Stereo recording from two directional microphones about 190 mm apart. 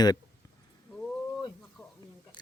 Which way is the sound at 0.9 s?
10° left (ahead or behind).